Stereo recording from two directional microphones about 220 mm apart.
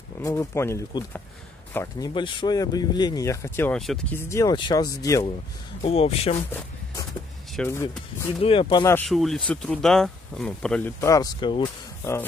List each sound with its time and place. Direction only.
0.2 s speech: 15° left (ahead or behind)
4.3 s speech: 15° left (ahead or behind)
5.8 s speech: 25° left (ahead or behind)
7.5 s speech: 10° left (ahead or behind)
8.4 s speech: 25° left (ahead or behind)
9.1 s speech: centre (ahead or behind)
11.0 s speech: 15° left (ahead or behind)